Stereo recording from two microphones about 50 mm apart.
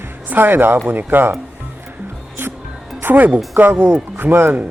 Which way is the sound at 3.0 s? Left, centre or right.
Right.